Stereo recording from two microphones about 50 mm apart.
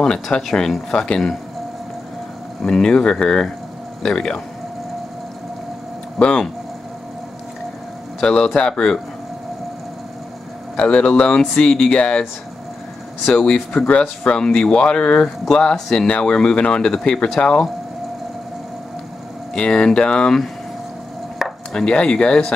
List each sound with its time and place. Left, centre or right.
0.0 s speech: centre
2.6 s speech: centre
6.1 s speech: centre
8.2 s speech: centre
10.8 s speech: left
13.3 s speech: left
15.7 s speech: centre
19.5 s speech: centre
21.4 s chopping: centre
21.7 s speech: centre